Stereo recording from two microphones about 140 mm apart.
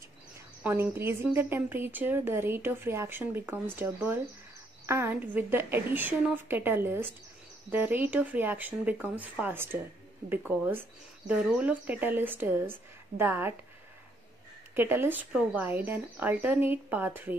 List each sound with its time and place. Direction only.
0.7 s a woman's voice: 15° right (ahead or behind)
14.8 s a woman's voice: 15° right (ahead or behind)